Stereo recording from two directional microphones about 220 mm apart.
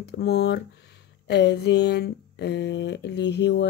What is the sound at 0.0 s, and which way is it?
Speech, 45° left (ahead or behind).